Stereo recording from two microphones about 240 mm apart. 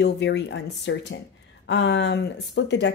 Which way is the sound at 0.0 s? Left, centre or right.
Left.